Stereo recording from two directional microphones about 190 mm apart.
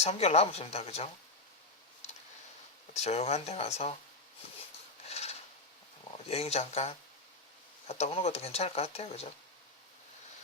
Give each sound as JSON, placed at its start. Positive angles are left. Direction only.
{"t": 0.0, "sound": "speech", "side_deg": 35}
{"t": 2.9, "sound": "speech", "side_deg": 35}
{"t": 5.0, "sound": "a sound", "side_deg": 35}
{"t": 6.2, "sound": "speech", "side_deg": 35}